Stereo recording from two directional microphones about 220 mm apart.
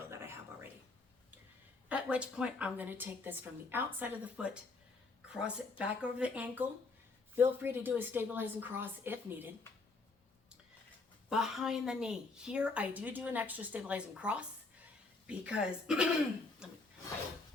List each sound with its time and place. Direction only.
1.9 s a woman's voice: 5° right (ahead or behind)
11.3 s a woman's voice: centre (ahead or behind)